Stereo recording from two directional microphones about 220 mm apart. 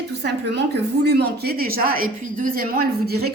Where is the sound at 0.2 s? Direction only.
50° right (ahead or behind).